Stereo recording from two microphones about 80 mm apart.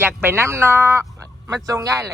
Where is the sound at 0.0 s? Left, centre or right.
Right.